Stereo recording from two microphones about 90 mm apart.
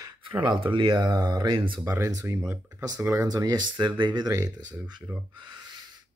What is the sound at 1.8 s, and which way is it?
Speech, 35° right (ahead or behind).